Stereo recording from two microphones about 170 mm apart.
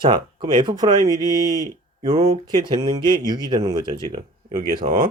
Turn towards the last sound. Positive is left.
turn(degrees=-50)  # may be behind; listen again after turning